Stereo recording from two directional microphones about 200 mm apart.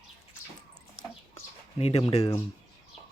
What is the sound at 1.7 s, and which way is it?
Speech, 30° left (ahead or behind).